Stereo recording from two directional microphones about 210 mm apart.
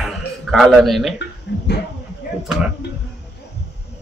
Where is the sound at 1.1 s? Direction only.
55° left (ahead or behind).